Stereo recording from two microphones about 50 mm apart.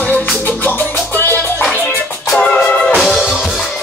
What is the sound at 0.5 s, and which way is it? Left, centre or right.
Music, left.